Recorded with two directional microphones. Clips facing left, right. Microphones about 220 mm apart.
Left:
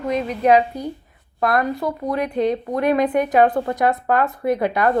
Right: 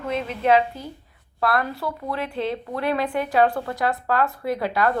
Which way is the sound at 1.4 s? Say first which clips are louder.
Left 4 dB; 20° left (ahead or behind).